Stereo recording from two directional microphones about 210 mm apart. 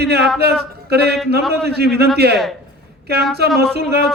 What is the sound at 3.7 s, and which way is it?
Speech, 50° right (ahead or behind).